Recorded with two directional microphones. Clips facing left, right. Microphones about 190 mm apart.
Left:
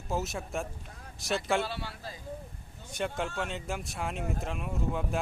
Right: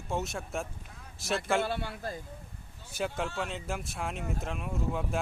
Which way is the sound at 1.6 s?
55° right (ahead or behind).